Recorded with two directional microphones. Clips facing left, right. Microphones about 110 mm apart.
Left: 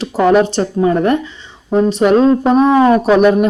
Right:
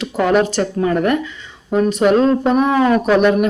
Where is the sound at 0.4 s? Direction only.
25° left (ahead or behind).